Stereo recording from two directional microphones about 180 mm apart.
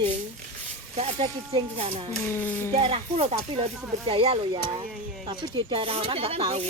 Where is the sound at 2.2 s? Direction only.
10° left (ahead or behind).